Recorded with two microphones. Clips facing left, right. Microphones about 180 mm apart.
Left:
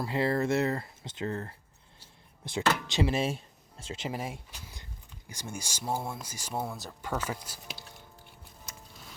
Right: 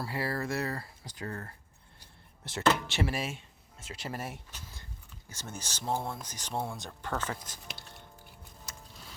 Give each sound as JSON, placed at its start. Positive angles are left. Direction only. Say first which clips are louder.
{"t": 0.0, "sound": "speech", "louder": "left 6 dB", "side_deg": 20}